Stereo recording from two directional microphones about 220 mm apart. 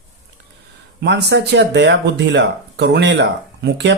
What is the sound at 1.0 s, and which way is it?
Speech, 50° right (ahead or behind).